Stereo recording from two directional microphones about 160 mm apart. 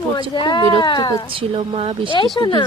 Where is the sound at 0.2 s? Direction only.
30° left (ahead or behind).